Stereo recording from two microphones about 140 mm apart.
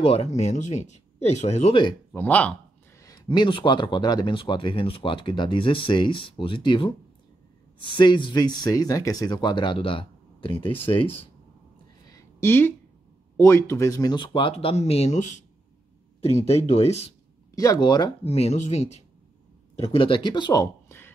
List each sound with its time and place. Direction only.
0.0 s speech: 45° left (ahead or behind)
2.1 s speech: 10° left (ahead or behind)
3.3 s speech: 35° left (ahead or behind)
8.0 s speech: 35° left (ahead or behind)
12.1 s a sound: 20° left (ahead or behind)
13.4 s speech: 20° left (ahead or behind); by 17.1 s 50° left (ahead or behind)
17.6 s speech: 30° left (ahead or behind)
18.2 s speech: 45° left (ahead or behind)